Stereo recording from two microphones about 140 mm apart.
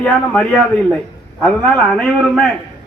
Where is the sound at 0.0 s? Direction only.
10° left (ahead or behind).